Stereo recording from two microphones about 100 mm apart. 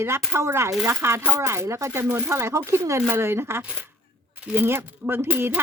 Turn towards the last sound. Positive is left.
turn(degrees=-20)  # may be behind; listen again after turning